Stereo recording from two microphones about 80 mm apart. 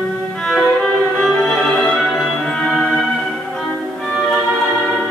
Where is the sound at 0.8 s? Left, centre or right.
Centre.